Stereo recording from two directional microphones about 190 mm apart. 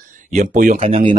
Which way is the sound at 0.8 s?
30° right (ahead or behind).